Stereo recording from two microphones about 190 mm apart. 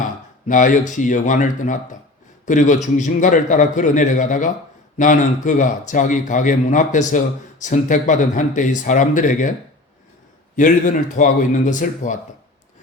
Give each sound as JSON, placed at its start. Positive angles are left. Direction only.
{"t": 0.4, "sound": "speech", "side_deg": 40}
{"t": 10.5, "sound": "speech", "side_deg": 40}